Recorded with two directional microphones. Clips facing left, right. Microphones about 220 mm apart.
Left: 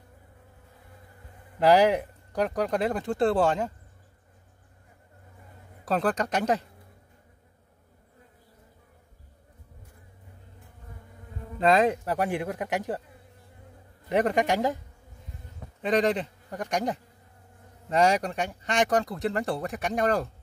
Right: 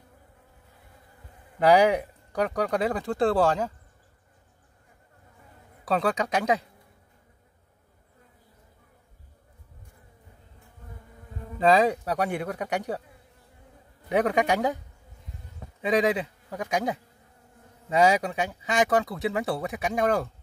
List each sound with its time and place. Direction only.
1.6 s speech: centre (ahead or behind)
5.9 s speech: centre (ahead or behind)
11.6 s speech: centre (ahead or behind)
14.0 s speech: centre (ahead or behind)
15.8 s speech: 5° right (ahead or behind)